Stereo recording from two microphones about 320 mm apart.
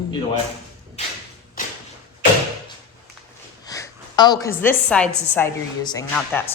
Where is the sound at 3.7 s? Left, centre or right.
Centre.